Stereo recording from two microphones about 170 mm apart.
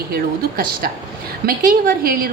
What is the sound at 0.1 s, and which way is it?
A woman's voice, 60° right (ahead or behind).